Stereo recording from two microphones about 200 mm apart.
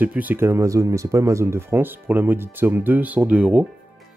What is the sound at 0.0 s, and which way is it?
Speech, 10° right (ahead or behind).